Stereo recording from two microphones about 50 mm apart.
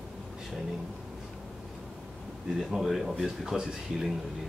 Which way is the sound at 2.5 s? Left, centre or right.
Centre.